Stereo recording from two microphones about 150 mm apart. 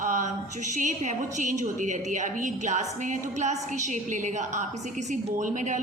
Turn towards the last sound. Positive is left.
turn(degrees=-55)  # may be behind; listen again after turning